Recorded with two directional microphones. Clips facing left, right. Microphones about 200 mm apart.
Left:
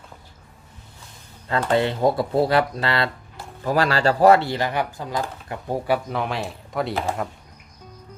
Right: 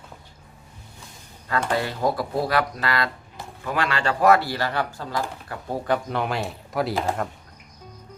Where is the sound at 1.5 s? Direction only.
25° left (ahead or behind); by 7.3 s centre (ahead or behind).